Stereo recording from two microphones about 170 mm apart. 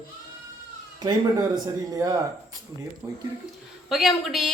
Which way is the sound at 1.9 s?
20° right (ahead or behind).